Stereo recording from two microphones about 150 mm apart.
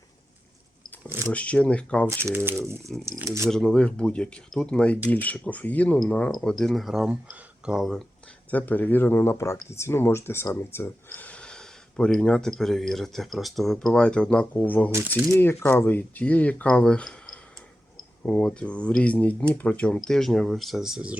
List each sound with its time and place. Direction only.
1.3 s speech: 10° left (ahead or behind)
2.0 s speech: 15° right (ahead or behind)
3.5 s speech: 5° left (ahead or behind)
8.4 s speech: 10° left (ahead or behind); by 21.2 s 5° right (ahead or behind)